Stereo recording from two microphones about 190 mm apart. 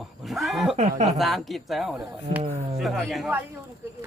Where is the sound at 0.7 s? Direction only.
35° right (ahead or behind).